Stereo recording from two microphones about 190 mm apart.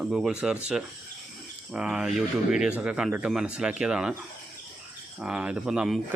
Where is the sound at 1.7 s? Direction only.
5° right (ahead or behind).